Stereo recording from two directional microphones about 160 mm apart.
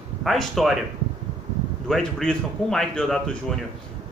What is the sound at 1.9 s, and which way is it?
Speech, 5° left (ahead or behind).